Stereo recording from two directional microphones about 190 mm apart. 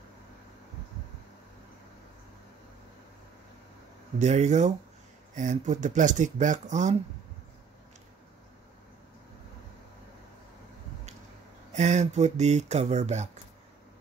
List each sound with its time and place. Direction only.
4.2 s speech: 35° right (ahead or behind)
11.7 s speech: 40° right (ahead or behind)